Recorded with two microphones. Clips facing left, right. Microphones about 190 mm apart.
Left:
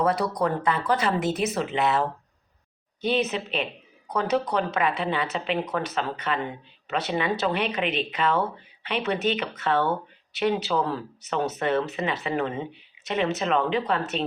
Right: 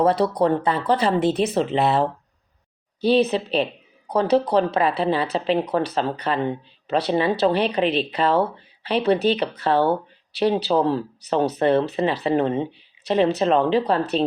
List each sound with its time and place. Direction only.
0.0 s speech: 30° right (ahead or behind)